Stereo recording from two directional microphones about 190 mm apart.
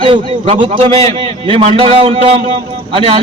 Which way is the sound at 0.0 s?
30° right (ahead or behind).